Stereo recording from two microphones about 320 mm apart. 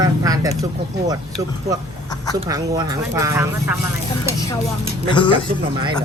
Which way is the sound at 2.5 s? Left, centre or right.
Centre.